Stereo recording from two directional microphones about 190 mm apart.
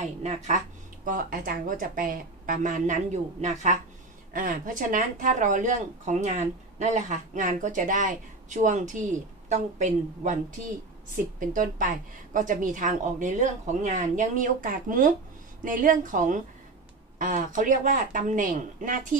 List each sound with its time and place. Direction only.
0.0 s speech: 35° right (ahead or behind)
1.0 s a woman's voice: 45° right (ahead or behind)
11.3 s a woman's voice: 45° right (ahead or behind)